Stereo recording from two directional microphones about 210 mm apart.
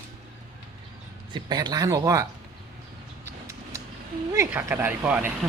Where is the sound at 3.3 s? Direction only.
15° right (ahead or behind).